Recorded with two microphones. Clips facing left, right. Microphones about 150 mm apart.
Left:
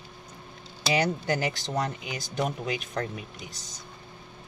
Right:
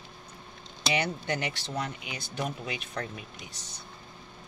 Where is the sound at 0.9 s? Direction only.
35° left (ahead or behind).